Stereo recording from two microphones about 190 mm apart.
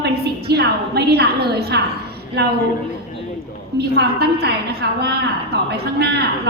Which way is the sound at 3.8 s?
60° right (ahead or behind).